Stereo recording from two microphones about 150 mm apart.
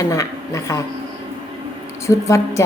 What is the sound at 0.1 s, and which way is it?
Speech, 20° left (ahead or behind).